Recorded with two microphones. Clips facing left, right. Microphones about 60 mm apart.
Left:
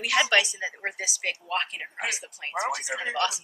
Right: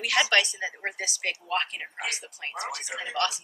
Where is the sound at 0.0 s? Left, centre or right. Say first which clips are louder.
Left 1 dB; centre.